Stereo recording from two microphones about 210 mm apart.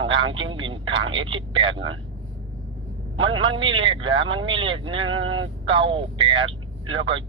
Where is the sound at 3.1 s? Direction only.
25° right (ahead or behind).